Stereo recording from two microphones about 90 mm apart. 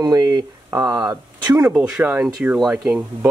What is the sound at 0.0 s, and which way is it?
Speech, 45° right (ahead or behind).